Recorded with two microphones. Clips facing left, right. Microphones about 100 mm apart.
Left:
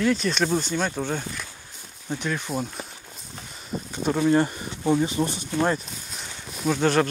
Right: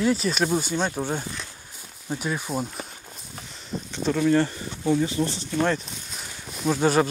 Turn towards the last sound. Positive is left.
turn(degrees=-10)  # may be behind; listen again after turning